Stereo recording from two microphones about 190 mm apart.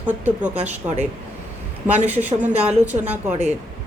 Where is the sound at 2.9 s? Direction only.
35° right (ahead or behind).